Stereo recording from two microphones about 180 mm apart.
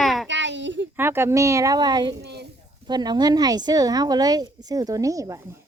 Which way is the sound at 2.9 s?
25° right (ahead or behind).